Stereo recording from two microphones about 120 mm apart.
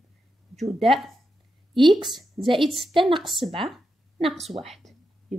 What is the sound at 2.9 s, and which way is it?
Speech, 45° right (ahead or behind).